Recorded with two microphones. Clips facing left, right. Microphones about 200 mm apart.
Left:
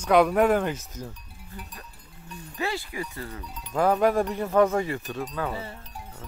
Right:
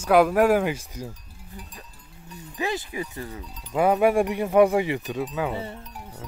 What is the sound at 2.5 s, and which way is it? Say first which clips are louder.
Speech: right 2 dB; 20° right (ahead or behind).